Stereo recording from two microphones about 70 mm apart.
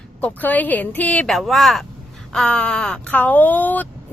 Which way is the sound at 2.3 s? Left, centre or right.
Centre.